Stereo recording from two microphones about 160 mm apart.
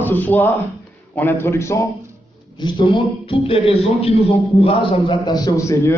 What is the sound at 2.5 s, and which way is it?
A man's voice, 30° left (ahead or behind).